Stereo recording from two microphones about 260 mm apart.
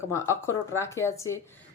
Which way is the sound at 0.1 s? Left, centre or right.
Centre.